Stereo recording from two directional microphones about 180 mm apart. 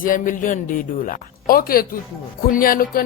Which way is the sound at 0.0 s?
50° left (ahead or behind).